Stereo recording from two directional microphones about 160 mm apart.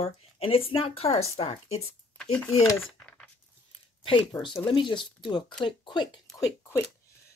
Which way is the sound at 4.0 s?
30° left (ahead or behind).